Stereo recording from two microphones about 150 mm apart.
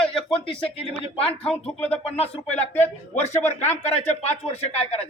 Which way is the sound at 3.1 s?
50° left (ahead or behind).